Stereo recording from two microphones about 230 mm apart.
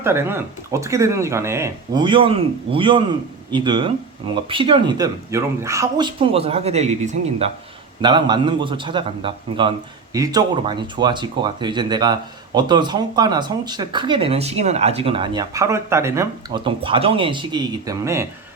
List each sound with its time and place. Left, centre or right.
0.0 s a man's voice: centre